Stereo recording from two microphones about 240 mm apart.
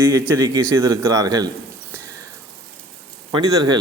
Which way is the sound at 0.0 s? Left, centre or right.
Centre.